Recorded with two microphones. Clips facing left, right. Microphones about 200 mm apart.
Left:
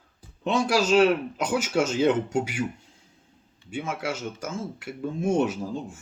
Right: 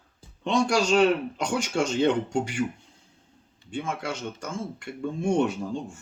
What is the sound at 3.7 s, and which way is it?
Speech, 5° left (ahead or behind).